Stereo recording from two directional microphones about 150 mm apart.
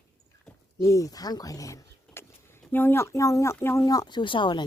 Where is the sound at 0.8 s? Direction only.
20° left (ahead or behind).